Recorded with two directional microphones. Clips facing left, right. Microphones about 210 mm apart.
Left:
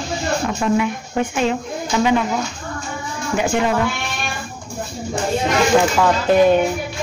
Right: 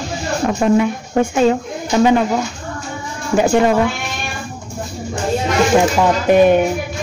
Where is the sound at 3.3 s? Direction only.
40° right (ahead or behind).